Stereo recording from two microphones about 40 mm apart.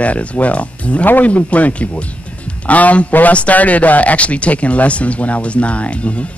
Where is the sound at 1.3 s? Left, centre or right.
Left.